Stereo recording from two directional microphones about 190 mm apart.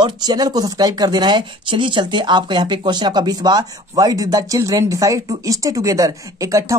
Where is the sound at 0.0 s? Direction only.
20° right (ahead or behind).